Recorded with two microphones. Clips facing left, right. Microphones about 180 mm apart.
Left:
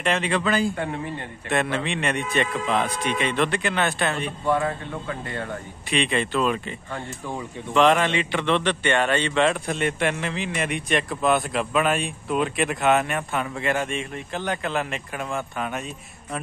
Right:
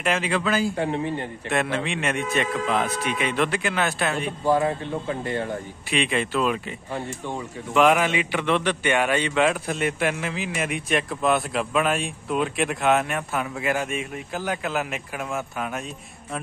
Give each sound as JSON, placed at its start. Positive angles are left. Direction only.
{"t": 0.0, "sound": "a man's voice", "side_deg": -5}
{"t": 4.6, "sound": "speech", "side_deg": -25}
{"t": 5.9, "sound": "a man's voice", "side_deg": -5}